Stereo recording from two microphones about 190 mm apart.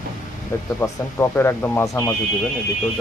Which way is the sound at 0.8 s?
10° left (ahead or behind).